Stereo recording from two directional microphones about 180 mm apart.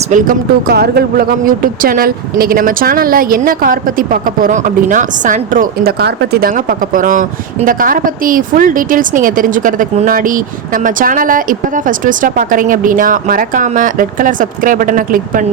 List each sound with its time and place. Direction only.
0.1 s speech: 50° right (ahead or behind)